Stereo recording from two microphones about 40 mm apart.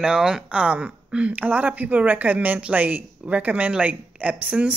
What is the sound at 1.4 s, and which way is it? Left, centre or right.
Speech, right.